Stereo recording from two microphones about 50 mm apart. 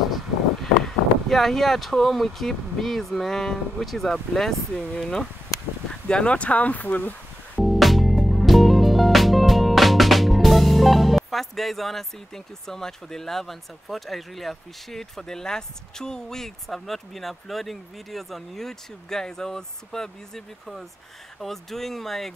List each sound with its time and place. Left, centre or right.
0.8 s speech: centre; by 7.2 s left
7.6 s music: centre
21.4 s speech: centre